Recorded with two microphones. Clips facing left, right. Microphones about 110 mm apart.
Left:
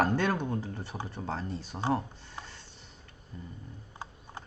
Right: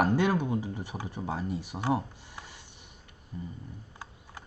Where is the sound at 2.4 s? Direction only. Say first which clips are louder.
Even; 15° right (ahead or behind).